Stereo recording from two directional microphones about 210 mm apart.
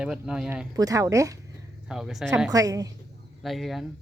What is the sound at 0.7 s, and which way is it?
Speech, 15° right (ahead or behind).